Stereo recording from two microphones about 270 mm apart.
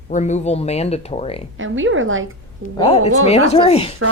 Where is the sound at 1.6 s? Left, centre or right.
Right.